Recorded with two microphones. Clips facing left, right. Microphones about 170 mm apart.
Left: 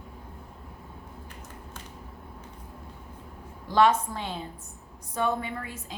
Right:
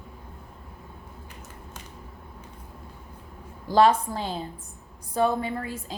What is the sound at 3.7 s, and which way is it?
A woman's voice, 35° right (ahead or behind).